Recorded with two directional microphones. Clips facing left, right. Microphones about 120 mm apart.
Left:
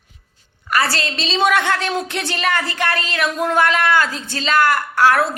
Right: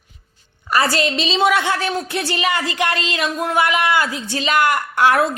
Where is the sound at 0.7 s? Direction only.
20° right (ahead or behind).